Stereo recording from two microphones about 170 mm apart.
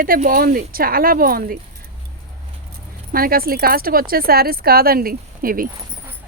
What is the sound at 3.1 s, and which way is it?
A woman's voice, 60° right (ahead or behind).